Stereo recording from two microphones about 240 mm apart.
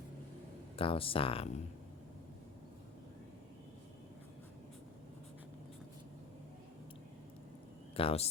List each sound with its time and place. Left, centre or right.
0.8 s speech: left
7.9 s speech: left